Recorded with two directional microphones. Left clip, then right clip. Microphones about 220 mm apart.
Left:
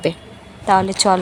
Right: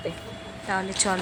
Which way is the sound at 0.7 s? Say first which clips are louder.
Left 12 dB; 25° left (ahead or behind).